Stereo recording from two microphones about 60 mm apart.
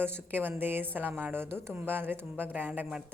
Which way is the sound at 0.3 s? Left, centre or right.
Right.